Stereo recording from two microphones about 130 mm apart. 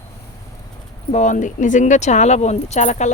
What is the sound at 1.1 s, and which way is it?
Speech, 70° left (ahead or behind).